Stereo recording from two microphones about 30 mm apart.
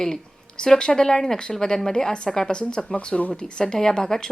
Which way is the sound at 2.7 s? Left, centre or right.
Left.